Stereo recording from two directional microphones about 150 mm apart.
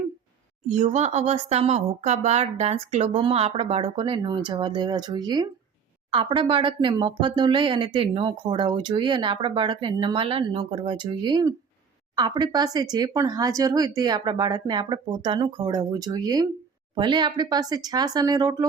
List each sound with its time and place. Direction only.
0.7 s speech: 50° right (ahead or behind); by 18.6 s 25° right (ahead or behind)